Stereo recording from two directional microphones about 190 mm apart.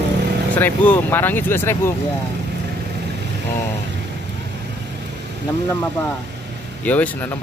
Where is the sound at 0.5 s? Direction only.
10° left (ahead or behind).